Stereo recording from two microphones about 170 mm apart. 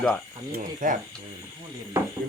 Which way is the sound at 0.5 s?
50° right (ahead or behind).